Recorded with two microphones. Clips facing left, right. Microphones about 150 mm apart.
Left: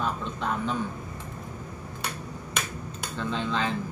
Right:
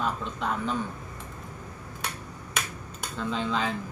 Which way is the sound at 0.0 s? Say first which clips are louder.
Even; centre (ahead or behind).